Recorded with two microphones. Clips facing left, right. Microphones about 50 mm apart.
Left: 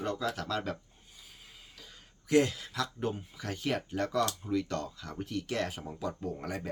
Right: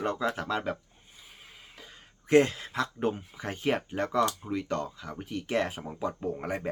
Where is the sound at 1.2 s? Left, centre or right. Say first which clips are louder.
Right 4 dB; right.